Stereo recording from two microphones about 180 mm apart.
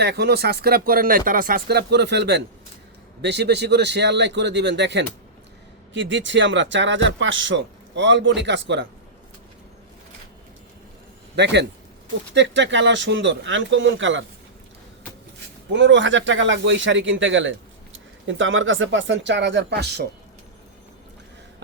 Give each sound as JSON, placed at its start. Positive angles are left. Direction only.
{"t": 0.0, "sound": "a man's voice", "side_deg": -65}
{"t": 5.9, "sound": "speech", "side_deg": -90}
{"t": 11.3, "sound": "a man's voice", "side_deg": -70}
{"t": 15.7, "sound": "speech", "side_deg": -90}